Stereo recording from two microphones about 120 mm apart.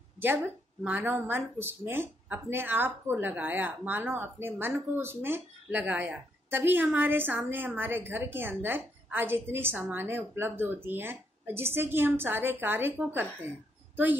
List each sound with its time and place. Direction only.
0.8 s speech: 15° right (ahead or behind)